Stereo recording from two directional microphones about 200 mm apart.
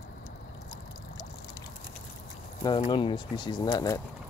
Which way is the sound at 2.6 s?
25° left (ahead or behind).